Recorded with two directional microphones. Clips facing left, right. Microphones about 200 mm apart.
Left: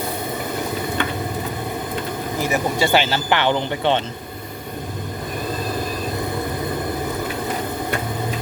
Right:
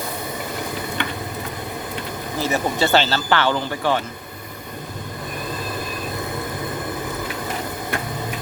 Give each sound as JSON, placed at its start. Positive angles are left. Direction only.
{"t": 2.4, "sound": "speech", "side_deg": 15}